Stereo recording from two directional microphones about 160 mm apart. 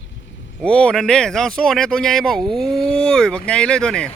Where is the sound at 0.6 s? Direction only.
5° left (ahead or behind).